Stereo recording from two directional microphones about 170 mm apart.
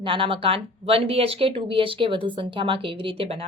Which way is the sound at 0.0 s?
30° right (ahead or behind).